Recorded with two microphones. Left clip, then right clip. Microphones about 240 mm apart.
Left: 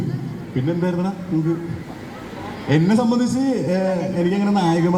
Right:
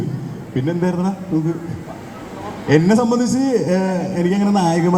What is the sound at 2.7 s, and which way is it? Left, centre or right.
A man's voice, right.